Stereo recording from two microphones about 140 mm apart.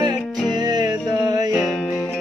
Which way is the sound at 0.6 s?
30° right (ahead or behind).